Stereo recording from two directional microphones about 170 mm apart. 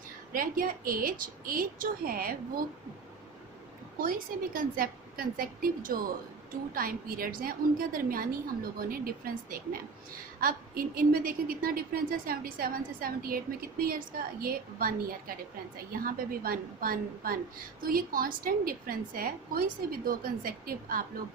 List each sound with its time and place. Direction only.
0.3 s a woman's voice: 55° right (ahead or behind)
3.9 s a woman's voice: 55° right (ahead or behind)